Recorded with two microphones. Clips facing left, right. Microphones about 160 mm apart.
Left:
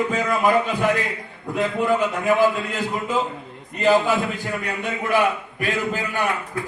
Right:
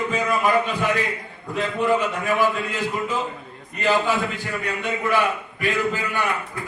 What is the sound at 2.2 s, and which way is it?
Speech, 20° left (ahead or behind).